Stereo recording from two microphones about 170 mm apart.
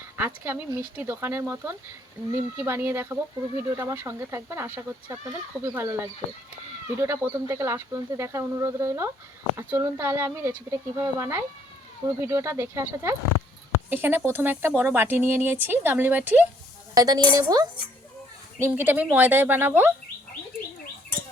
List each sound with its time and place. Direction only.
0.2 s speech: 10° right (ahead or behind)
16.9 s speech: 20° right (ahead or behind)
18.6 s speech: 10° right (ahead or behind)